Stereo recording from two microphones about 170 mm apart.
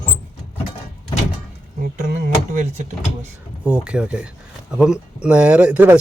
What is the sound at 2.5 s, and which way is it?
Speech, 45° right (ahead or behind).